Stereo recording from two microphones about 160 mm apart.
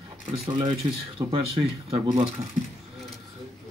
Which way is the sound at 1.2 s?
40° right (ahead or behind).